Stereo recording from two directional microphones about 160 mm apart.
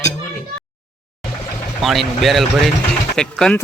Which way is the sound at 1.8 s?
Centre (ahead or behind).